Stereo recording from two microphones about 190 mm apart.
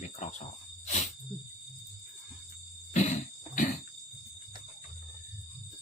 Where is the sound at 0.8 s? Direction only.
35° left (ahead or behind).